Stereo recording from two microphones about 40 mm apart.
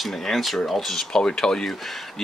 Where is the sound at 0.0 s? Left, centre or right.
Centre.